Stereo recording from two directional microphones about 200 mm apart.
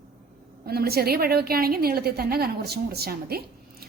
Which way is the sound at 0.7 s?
50° right (ahead or behind).